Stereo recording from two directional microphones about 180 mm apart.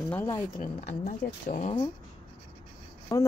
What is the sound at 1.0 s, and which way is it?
Speech, 40° left (ahead or behind).